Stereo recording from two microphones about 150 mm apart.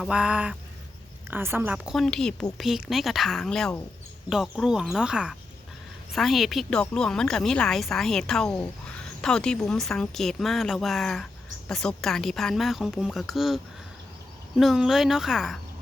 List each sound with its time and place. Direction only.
0.0 s a sound: 5° right (ahead or behind)
1.3 s a woman's voice: 15° right (ahead or behind)
14.6 s a woman's voice: centre (ahead or behind)